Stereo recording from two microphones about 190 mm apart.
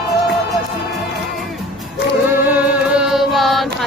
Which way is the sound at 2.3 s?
10° right (ahead or behind).